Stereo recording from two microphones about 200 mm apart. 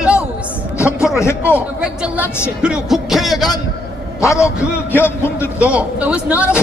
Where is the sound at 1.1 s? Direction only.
15° left (ahead or behind).